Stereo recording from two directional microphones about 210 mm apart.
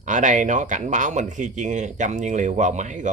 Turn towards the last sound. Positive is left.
turn(degrees=-35)  # may be behind; listen again after turning